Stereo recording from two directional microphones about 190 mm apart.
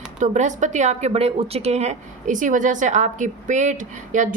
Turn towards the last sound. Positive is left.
turn(degrees=-40)  # may be behind; listen again after turning